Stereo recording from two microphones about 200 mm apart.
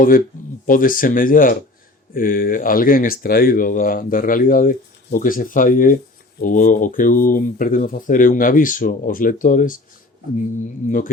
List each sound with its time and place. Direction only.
0.7 s a man's voice: 45° left (ahead or behind)